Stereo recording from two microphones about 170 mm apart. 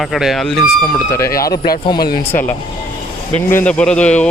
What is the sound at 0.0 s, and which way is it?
Speech, centre (ahead or behind).